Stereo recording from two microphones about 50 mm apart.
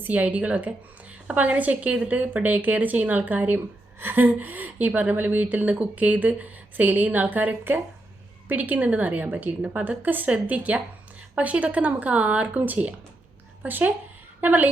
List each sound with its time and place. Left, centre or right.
0.0 s a woman's voice: right
9.6 s speech: centre
9.8 s a woman's voice: right